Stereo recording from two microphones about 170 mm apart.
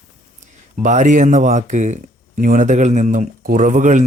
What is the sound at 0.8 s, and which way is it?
Speech, 45° right (ahead or behind).